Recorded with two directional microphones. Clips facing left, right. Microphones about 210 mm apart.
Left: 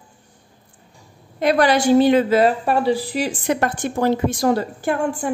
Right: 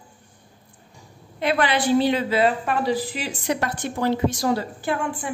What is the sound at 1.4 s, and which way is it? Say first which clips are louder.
A woman's voice: left 5 dB; 45° left (ahead or behind).